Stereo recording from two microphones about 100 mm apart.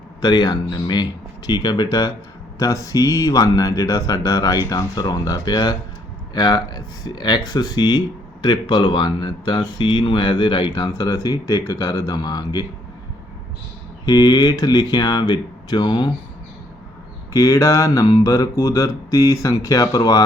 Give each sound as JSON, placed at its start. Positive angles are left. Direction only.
{"t": 0.2, "sound": "speech", "side_deg": 45}
{"t": 2.6, "sound": "mantra", "side_deg": 35}
{"t": 6.3, "sound": "speech", "side_deg": 45}
{"t": 14.0, "sound": "speech", "side_deg": 45}
{"t": 17.3, "sound": "mantra", "side_deg": 35}